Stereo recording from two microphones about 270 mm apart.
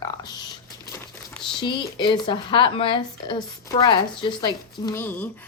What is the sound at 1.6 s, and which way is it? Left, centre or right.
Speech, centre.